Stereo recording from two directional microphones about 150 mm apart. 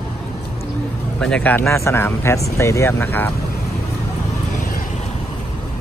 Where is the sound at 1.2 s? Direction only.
10° left (ahead or behind).